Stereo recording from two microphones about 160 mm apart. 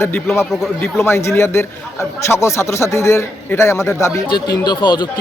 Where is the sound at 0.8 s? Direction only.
15° left (ahead or behind).